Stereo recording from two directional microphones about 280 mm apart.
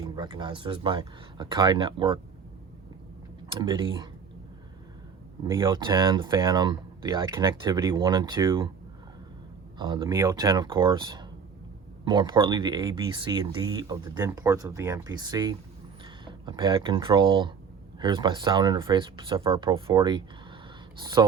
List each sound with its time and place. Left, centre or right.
0.0 s speech: centre
3.5 s speech: centre
5.5 s speech: centre
9.7 s speech: centre